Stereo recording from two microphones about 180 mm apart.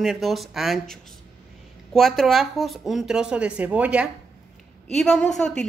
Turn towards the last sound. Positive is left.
turn(degrees=5)  # may be behind; listen again after turning